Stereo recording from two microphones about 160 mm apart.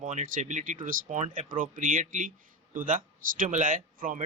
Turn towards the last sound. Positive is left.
turn(degrees=-60)  # may be behind; listen again after turning